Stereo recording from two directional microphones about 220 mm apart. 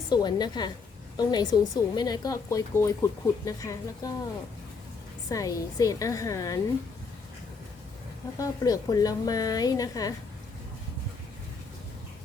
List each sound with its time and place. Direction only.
0.1 s a woman's voice: 20° left (ahead or behind)
5.3 s a woman's voice: 15° left (ahead or behind)
8.4 s a woman's voice: 15° left (ahead or behind)